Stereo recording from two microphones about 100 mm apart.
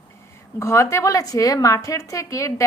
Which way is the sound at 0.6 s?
30° left (ahead or behind).